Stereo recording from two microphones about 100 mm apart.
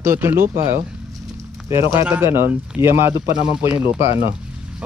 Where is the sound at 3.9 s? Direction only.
75° left (ahead or behind).